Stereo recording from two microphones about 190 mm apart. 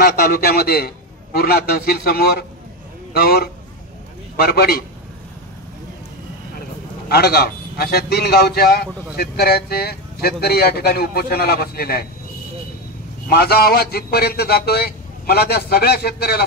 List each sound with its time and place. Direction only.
0.0 s a man's voice: 55° left (ahead or behind)
7.1 s a man's voice: 55° left (ahead or behind)
13.3 s a man's voice: 55° left (ahead or behind)